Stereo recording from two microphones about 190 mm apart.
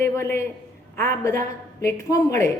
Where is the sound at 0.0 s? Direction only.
15° left (ahead or behind).